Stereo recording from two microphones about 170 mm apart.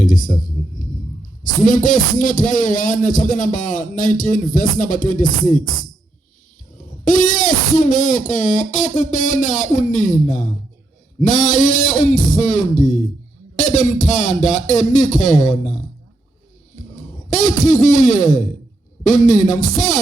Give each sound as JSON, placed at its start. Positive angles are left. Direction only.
{"t": 0.0, "sound": "a sound", "side_deg": 50}
{"t": 1.5, "sound": "a man's voice", "side_deg": 50}
{"t": 7.0, "sound": "a man's voice", "side_deg": 50}
{"t": 16.9, "sound": "a sound", "side_deg": 45}
{"t": 17.7, "sound": "a man's voice", "side_deg": 45}
{"t": 18.2, "sound": "music", "side_deg": 20}
{"t": 19.0, "sound": "a man's voice", "side_deg": 45}